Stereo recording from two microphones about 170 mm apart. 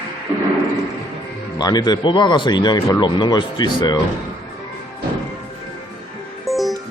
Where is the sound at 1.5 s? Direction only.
25° left (ahead or behind).